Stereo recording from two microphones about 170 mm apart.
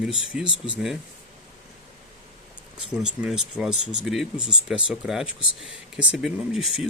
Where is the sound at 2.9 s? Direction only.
5° right (ahead or behind).